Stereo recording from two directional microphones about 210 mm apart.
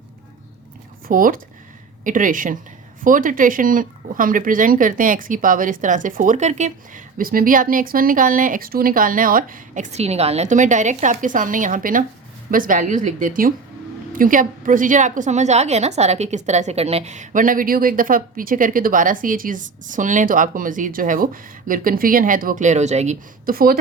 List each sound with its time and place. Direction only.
1.0 s a woman's voice: 40° right (ahead or behind)